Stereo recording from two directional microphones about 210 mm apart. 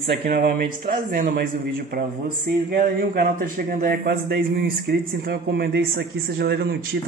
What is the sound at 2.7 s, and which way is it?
Speech, 45° right (ahead or behind).